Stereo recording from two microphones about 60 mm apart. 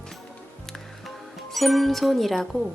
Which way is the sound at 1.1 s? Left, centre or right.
Centre.